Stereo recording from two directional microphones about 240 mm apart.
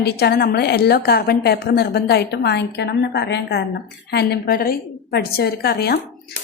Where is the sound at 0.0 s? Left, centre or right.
Left.